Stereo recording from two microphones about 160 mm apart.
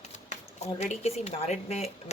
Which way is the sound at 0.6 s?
40° left (ahead or behind).